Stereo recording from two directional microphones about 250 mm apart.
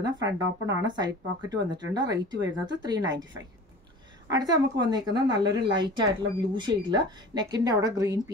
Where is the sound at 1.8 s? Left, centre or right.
Centre.